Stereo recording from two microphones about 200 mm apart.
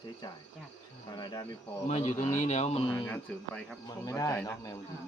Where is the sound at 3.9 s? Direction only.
20° left (ahead or behind).